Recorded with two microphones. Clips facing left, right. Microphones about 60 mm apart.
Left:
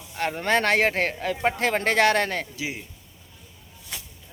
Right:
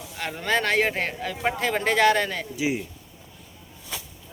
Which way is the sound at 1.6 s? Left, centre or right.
Left.